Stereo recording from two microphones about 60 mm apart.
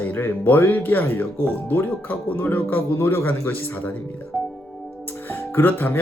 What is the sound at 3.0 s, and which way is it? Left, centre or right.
Speech, left.